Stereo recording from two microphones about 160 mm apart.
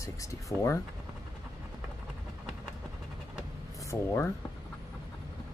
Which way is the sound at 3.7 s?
15° left (ahead or behind).